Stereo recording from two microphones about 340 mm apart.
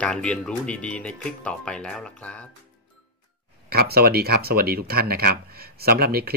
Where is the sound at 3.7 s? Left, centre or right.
Right.